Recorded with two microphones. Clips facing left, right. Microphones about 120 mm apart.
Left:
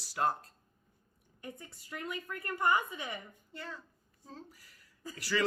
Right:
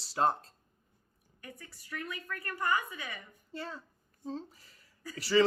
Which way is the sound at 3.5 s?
30° right (ahead or behind).